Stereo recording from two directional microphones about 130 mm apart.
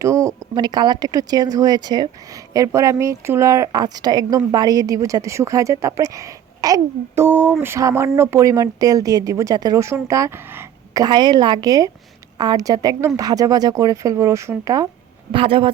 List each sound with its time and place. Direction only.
0.0 s speech: 25° right (ahead or behind)
7.3 s a sound: 15° right (ahead or behind)
7.6 s speech: 20° right (ahead or behind)
11.0 s a woman's voice: 35° right (ahead or behind)
15.3 s speech: 45° right (ahead or behind)